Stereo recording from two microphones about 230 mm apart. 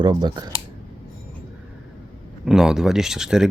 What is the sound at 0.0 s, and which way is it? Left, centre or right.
Speech, centre.